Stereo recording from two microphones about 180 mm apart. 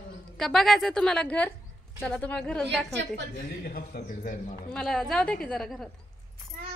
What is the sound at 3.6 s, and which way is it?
Speech, 60° left (ahead or behind).